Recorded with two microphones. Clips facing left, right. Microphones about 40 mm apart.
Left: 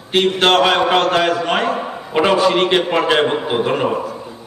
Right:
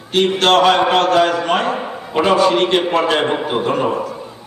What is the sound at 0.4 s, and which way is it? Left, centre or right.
Speech, centre.